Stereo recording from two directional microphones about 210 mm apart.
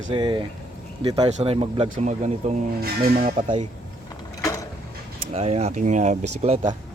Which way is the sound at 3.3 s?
25° right (ahead or behind).